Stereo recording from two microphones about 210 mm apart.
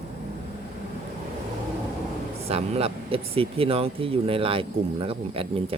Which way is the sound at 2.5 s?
30° right (ahead or behind).